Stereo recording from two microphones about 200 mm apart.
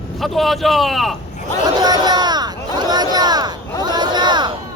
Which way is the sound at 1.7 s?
20° right (ahead or behind).